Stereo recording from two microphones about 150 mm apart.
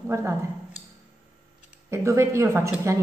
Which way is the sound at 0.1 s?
15° right (ahead or behind).